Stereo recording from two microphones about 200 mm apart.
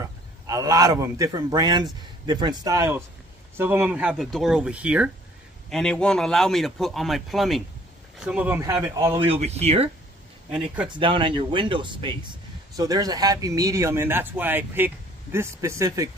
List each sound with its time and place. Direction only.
0.0 s a man's voice: 15° right (ahead or behind)
9.2 s speech: 30° right (ahead or behind)
11.0 s speech: 25° right (ahead or behind)